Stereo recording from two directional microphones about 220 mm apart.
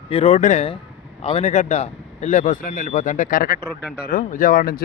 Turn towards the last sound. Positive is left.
turn(degrees=40)  # may be behind; listen again after turning